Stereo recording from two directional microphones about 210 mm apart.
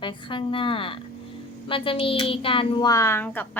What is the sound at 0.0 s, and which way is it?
A woman's voice, 25° left (ahead or behind).